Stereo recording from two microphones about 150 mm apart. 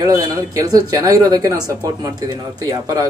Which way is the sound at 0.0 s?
25° right (ahead or behind).